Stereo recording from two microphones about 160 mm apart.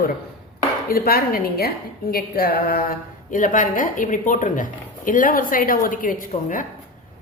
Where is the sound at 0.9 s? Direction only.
65° left (ahead or behind).